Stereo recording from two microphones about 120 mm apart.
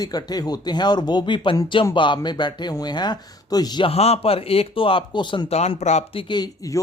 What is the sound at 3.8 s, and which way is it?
Speech, 60° left (ahead or behind).